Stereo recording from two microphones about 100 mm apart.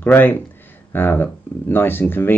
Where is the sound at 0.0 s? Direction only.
20° left (ahead or behind).